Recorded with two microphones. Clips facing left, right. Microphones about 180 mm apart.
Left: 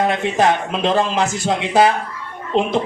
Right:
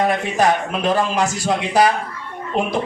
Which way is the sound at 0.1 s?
25° left (ahead or behind).